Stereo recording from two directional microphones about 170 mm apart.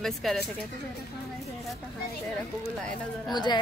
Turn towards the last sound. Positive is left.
turn(degrees=25)  # may be behind; listen again after turning